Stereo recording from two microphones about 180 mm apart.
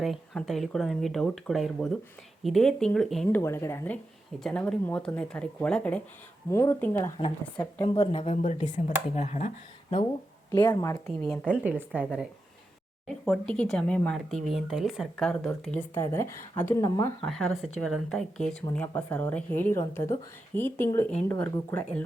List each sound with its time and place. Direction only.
0.0 s speech: centre (ahead or behind)
3.4 s speech: 15° left (ahead or behind)
7.5 s a woman's voice: 25° left (ahead or behind)
10.5 s a woman's voice: 25° left (ahead or behind)
11.3 s speech: 5° left (ahead or behind)
11.8 s speech: 5° right (ahead or behind); by 17.2 s 15° left (ahead or behind)
17.2 s speech: centre (ahead or behind)